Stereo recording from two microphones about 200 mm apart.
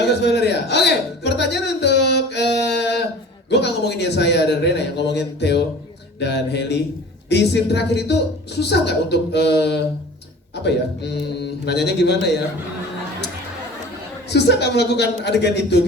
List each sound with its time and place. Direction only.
0.0 s music: 55° left (ahead or behind)
3.5 s a woman's voice: 55° left (ahead or behind)
14.3 s a woman's voice: 55° left (ahead or behind)